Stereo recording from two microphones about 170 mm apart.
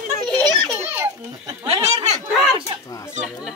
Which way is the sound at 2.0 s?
40° right (ahead or behind).